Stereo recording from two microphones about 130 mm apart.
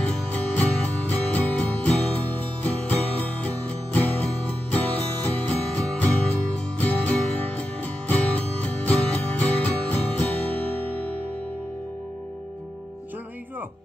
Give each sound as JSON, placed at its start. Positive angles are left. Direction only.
{"t": 0.0, "sound": "music", "side_deg": 10}